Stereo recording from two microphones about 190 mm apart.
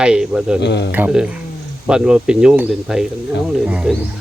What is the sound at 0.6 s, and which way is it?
Speech, 65° left (ahead or behind).